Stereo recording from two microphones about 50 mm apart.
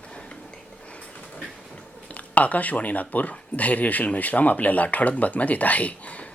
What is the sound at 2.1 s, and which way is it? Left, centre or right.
Speech, left.